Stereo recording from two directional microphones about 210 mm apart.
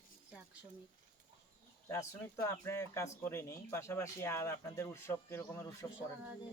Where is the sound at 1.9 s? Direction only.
15° left (ahead or behind).